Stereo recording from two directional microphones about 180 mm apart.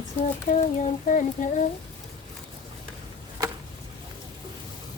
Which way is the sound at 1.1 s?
45° left (ahead or behind).